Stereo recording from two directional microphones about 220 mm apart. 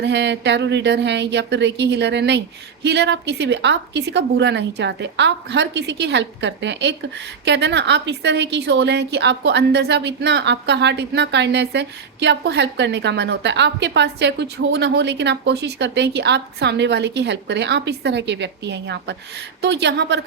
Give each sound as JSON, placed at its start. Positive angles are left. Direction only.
{"t": 0.0, "sound": "a woman's voice", "side_deg": -50}